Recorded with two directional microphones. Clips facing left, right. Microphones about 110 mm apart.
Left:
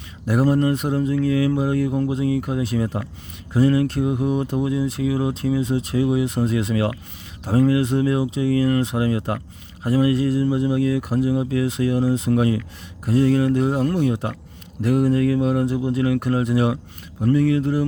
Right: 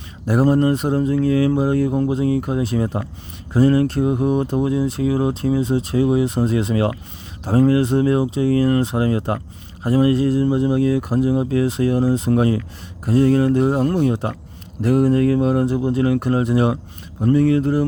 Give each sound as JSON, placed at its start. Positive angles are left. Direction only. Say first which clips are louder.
{"t": 0.3, "sound": "speech", "louder": "right 3 dB", "side_deg": -35}